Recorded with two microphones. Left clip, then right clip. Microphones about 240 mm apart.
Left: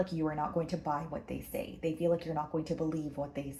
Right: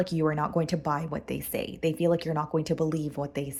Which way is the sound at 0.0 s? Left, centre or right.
Right.